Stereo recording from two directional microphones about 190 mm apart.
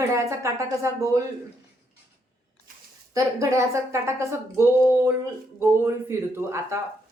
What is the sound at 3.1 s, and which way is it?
Speech, 15° right (ahead or behind).